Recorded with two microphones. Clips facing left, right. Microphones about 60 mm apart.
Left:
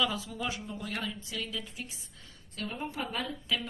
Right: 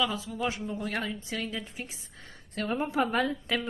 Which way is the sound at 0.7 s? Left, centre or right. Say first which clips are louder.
Right 4 dB; right.